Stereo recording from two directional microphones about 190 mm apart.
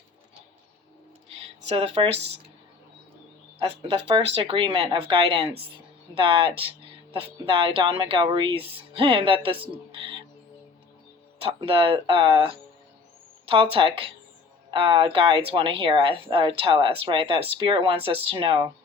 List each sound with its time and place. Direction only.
1.6 s speech: 30° right (ahead or behind)
4.4 s speech: 25° right (ahead or behind)
9.9 s music: 25° right (ahead or behind)
11.4 s speech: 30° right (ahead or behind)
13.5 s speech: 30° right (ahead or behind)